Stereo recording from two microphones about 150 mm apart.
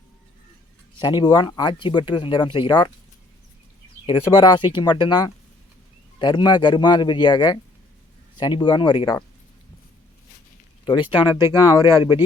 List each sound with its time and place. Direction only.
0.9 s speech: 30° left (ahead or behind)
4.4 s speech: 30° left (ahead or behind)
10.8 s speech: 35° left (ahead or behind)